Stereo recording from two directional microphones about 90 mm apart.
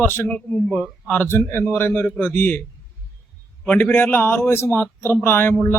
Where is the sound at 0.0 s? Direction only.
25° left (ahead or behind).